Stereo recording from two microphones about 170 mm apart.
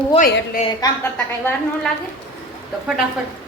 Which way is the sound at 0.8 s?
20° left (ahead or behind).